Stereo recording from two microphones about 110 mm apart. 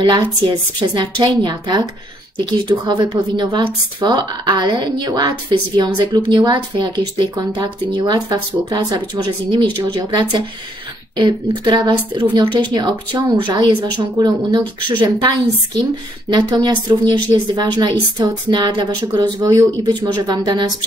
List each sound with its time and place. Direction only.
0.7 s speech: 40° right (ahead or behind)
19.4 s speech: 30° right (ahead or behind)
19.9 s speech: 40° right (ahead or behind)